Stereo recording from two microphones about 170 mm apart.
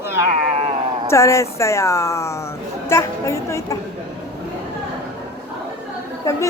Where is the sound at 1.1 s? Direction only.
15° left (ahead or behind).